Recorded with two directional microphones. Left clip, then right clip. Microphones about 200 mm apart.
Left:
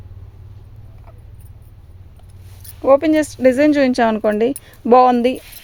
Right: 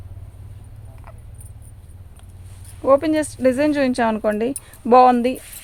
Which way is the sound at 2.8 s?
35° left (ahead or behind).